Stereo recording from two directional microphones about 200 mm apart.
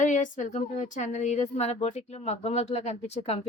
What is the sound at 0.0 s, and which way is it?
A woman's voice, 40° left (ahead or behind).